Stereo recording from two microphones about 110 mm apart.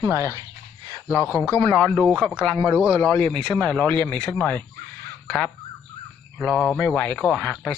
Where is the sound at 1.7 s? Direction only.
10° left (ahead or behind).